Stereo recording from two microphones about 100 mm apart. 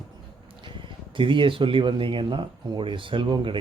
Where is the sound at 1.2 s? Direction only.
55° right (ahead or behind).